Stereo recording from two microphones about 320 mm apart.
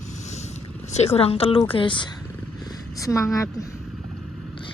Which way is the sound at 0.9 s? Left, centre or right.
Centre.